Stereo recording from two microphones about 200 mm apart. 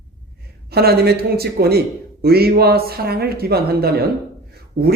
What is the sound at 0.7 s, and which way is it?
Speech, 50° right (ahead or behind).